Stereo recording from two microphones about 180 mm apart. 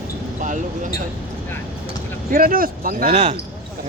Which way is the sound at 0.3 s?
45° right (ahead or behind).